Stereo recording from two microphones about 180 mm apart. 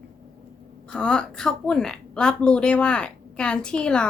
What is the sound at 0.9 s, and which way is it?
A woman's voice, 5° left (ahead or behind).